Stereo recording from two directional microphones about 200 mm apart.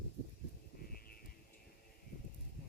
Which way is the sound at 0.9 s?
45° left (ahead or behind).